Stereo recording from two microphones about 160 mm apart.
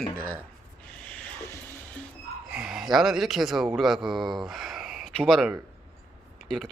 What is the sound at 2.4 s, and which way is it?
A man's voice, 5° right (ahead or behind).